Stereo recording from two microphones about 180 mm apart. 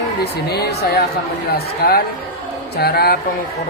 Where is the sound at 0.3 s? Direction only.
60° left (ahead or behind).